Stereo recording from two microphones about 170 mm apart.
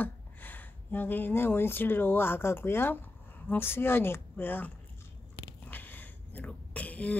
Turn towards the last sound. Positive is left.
turn(degrees=10)  # may be behind; listen again after turning